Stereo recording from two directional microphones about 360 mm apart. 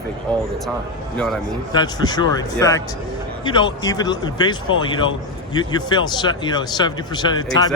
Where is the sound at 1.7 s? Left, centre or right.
Centre.